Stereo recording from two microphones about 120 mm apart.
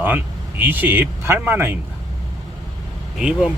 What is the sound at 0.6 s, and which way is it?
Speech, 15° right (ahead or behind).